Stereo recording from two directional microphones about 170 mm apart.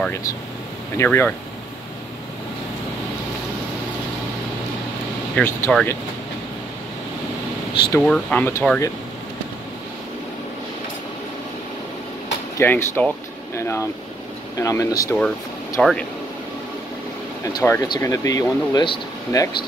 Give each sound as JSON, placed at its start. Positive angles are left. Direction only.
{"t": 0.0, "sound": "speech", "side_deg": 15}
{"t": 5.3, "sound": "speech", "side_deg": 5}
{"t": 8.0, "sound": "speech", "side_deg": 5}
{"t": 12.5, "sound": "speech", "side_deg": 15}
{"t": 15.8, "sound": "speech", "side_deg": 5}
{"t": 17.5, "sound": "speech", "side_deg": 20}